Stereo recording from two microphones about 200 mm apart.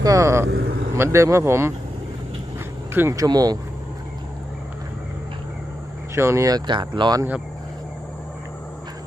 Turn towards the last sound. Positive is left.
turn(degrees=-20)  # may be behind; listen again after turning